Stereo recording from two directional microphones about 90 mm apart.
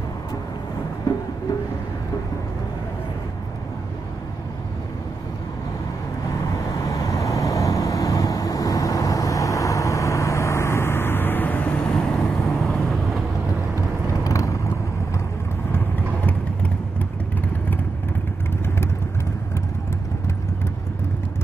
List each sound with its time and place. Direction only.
1.1 s music: 35° left (ahead or behind)
6.9 s vehicle: 40° left (ahead or behind); by 13.2 s 5° left (ahead or behind)
14.2 s vehicle: 35° left (ahead or behind)